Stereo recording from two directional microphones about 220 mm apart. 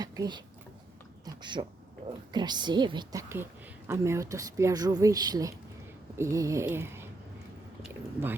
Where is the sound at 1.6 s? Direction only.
25° right (ahead or behind); by 6.9 s 10° right (ahead or behind).